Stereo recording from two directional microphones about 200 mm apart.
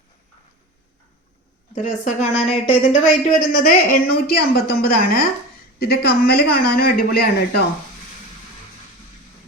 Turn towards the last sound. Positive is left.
turn(degrees=50)  # may be behind; listen again after turning